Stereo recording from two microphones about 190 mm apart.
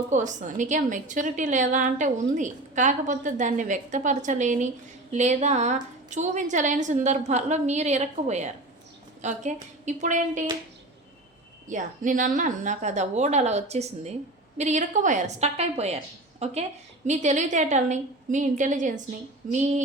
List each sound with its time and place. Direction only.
0.1 s a woman's voice: 40° right (ahead or behind)
11.7 s a woman's voice: 45° right (ahead or behind)
19.4 s a sound: 45° right (ahead or behind)